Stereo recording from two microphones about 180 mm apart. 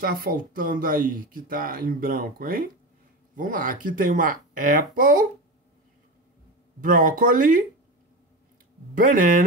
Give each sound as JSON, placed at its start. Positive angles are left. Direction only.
{"t": 0.0, "sound": "speech", "side_deg": -55}
{"t": 6.8, "sound": "speech", "side_deg": -50}
{"t": 8.9, "sound": "speech", "side_deg": -50}